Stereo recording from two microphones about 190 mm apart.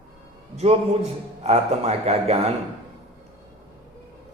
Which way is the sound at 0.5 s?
35° right (ahead or behind).